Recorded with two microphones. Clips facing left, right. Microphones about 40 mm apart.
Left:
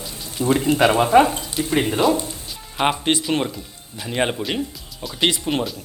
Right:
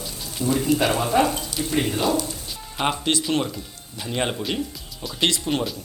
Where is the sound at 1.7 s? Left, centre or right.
Left.